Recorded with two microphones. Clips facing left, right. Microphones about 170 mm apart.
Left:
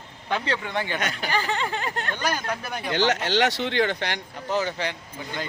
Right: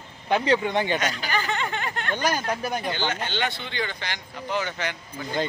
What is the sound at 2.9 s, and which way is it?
Speech, 80° left.